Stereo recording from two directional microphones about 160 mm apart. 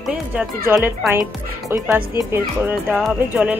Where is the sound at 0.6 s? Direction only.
15° right (ahead or behind).